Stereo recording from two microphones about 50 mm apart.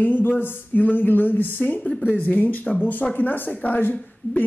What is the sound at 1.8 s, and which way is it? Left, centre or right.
Speech, centre.